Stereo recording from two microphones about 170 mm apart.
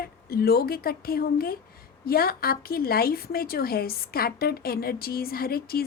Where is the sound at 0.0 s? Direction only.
65° left (ahead or behind).